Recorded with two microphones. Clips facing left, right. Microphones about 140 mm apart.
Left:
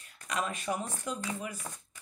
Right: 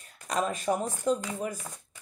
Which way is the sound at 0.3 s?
40° right (ahead or behind).